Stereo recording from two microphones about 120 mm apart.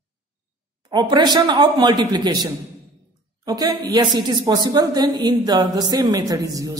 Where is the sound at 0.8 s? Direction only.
40° right (ahead or behind).